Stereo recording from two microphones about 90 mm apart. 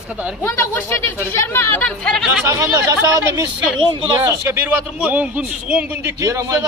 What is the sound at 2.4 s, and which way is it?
A man's voice, 40° right (ahead or behind).